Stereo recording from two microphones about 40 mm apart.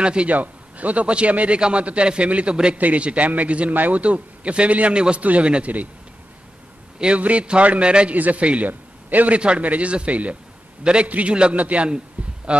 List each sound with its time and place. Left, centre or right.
0.0 s a man's voice: right
0.3 s a man's voice: right
3.7 s a man's voice: right
4.0 s a man's voice: right
7.2 s a man's voice: right
9.4 s a man's voice: right
11.1 s a man's voice: right